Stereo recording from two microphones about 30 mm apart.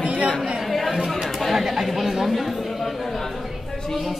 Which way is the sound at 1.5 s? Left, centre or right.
Centre.